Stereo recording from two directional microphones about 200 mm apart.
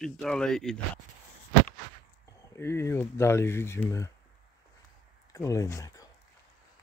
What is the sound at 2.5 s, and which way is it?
Speech, 10° left (ahead or behind).